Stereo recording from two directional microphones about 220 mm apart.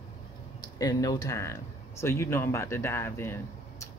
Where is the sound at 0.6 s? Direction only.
15° left (ahead or behind).